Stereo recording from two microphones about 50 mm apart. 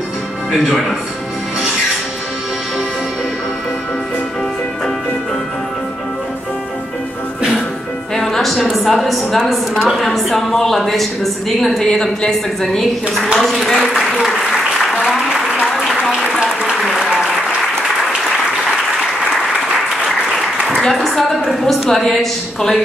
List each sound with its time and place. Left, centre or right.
8.1 s music: centre
8.7 s a woman's voice: centre
13.8 s applause: centre
16.1 s applause: centre
16.8 s applause: centre
20.8 s a woman's voice: centre